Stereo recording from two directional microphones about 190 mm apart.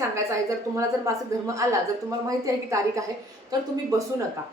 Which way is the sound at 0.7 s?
15° right (ahead or behind).